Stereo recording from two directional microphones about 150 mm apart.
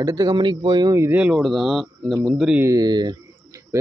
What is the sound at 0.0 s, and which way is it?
Speech, 25° right (ahead or behind).